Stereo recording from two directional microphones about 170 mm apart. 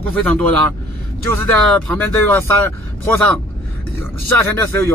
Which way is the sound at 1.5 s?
5° left (ahead or behind).